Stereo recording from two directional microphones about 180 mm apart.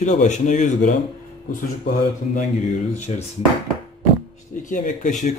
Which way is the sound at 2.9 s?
35° left (ahead or behind).